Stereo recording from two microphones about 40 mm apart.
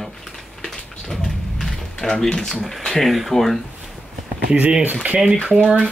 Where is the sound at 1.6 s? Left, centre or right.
Centre.